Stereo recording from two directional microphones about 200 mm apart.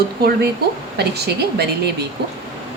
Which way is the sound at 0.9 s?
55° right (ahead or behind).